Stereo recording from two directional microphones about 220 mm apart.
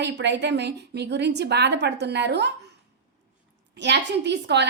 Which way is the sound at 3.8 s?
50° right (ahead or behind).